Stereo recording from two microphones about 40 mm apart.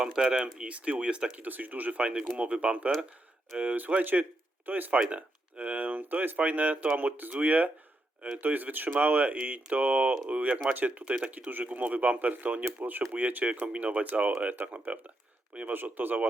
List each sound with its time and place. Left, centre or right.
0.0 s speech: centre
1.4 s speech: right
1.9 s speech: right
3.8 s a man's voice: right
4.9 s speech: right
13.1 s speech: right
15.7 s speech: right